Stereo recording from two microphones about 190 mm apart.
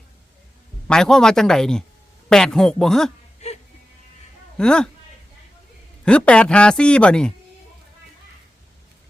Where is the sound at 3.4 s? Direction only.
35° left (ahead or behind).